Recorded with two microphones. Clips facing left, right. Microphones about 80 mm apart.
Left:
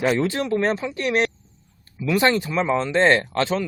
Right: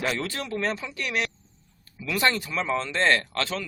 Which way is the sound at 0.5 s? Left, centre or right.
Left.